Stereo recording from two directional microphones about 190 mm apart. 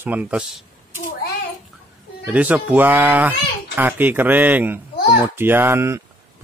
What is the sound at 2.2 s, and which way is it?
Speech, 10° right (ahead or behind).